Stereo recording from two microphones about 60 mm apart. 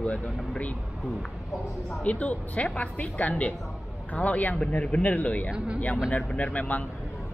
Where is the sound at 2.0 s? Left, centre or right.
Left.